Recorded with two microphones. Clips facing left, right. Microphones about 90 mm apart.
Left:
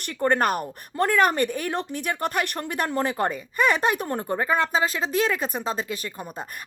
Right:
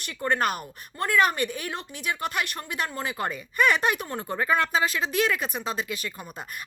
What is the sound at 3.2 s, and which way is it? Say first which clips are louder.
Speech: right 3 dB; 30° left (ahead or behind).